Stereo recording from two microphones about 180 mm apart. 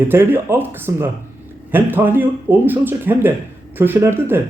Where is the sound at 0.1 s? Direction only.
10° right (ahead or behind).